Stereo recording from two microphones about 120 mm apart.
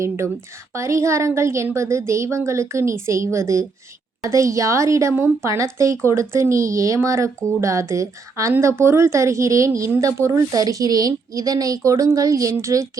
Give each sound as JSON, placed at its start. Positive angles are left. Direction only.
{"t": 0.7, "sound": "a woman's voice", "side_deg": -25}